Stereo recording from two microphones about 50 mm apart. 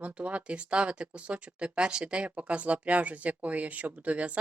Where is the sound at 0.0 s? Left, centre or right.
Right.